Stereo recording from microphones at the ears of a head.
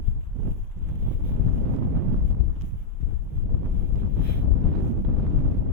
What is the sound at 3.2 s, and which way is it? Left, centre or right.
Wind noise, right.